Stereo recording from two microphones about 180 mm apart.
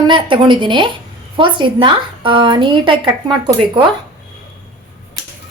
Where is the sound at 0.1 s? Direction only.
25° right (ahead or behind).